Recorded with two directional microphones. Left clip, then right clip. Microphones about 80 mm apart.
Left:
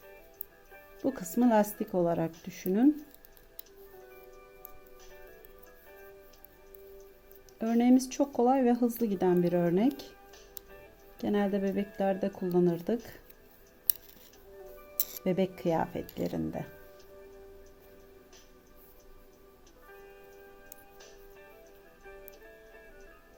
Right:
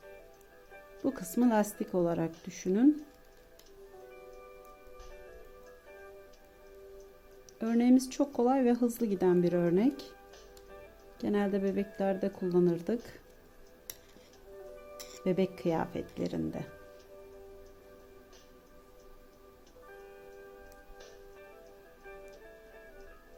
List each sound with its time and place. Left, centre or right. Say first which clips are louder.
1.0 s speech: left 2 dB; left
7.8 s speech: left 1 dB; left
11.2 s speech: left 1 dB; left
15.2 s speech: left 1 dB; left
15.6 s speech: left 2 dB; centre
16.1 s speech: left 1 dB; left
22.0 s music: right 1 dB; centre